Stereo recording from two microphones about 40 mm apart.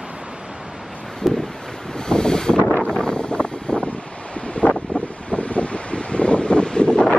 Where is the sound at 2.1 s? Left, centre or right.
Centre.